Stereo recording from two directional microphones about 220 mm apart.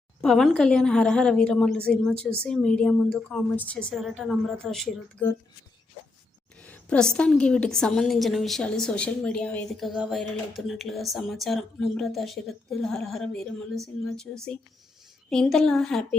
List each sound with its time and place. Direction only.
0.2 s a woman's voice: centre (ahead or behind)
6.7 s a woman's voice: 5° left (ahead or behind)